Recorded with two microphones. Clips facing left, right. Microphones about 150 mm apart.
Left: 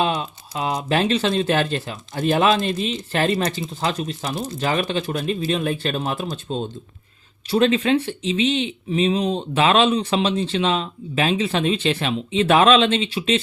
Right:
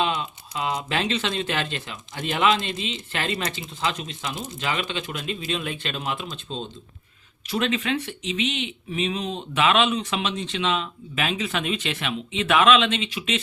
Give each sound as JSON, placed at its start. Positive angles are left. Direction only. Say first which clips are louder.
{"t": 0.0, "sound": "typing", "louder": "left 3 dB", "side_deg": 30}
{"t": 0.9, "sound": "speech", "louder": "left 6 dB", "side_deg": 35}
{"t": 7.4, "sound": "speech", "louder": "left 7 dB", "side_deg": 35}